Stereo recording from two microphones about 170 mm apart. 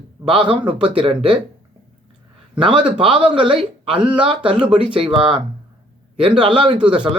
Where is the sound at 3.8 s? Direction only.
5° right (ahead or behind).